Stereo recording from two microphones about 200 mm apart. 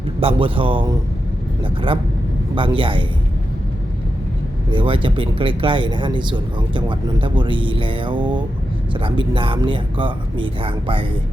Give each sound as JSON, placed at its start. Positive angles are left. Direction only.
{"t": 0.2, "sound": "speech", "side_deg": -25}
{"t": 2.6, "sound": "speech", "side_deg": -25}
{"t": 4.7, "sound": "speech", "side_deg": -25}